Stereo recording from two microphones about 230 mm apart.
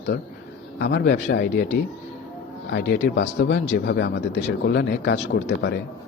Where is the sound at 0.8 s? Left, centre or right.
Left.